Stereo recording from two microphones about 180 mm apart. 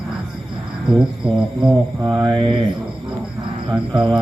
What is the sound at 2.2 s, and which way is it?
Mantra, 25° right (ahead or behind).